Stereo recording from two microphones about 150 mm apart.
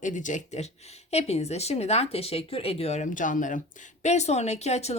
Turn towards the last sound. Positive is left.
turn(degrees=45)  # may be behind; listen again after turning